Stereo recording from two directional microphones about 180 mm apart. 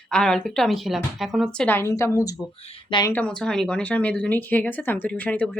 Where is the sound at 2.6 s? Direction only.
30° left (ahead or behind).